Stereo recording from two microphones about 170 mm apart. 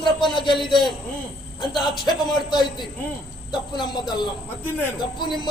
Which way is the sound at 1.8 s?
25° left (ahead or behind).